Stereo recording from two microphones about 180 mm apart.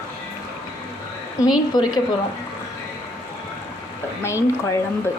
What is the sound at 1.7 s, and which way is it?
Speech, 20° left (ahead or behind).